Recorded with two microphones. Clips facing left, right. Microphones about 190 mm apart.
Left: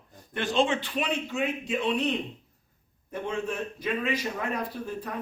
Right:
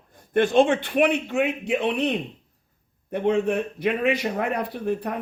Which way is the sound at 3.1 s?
65° right (ahead or behind).